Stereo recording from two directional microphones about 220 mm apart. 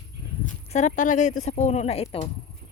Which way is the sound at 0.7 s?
35° left (ahead or behind).